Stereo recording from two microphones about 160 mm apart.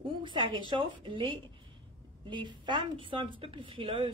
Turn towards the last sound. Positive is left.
turn(degrees=-30)  # may be behind; listen again after turning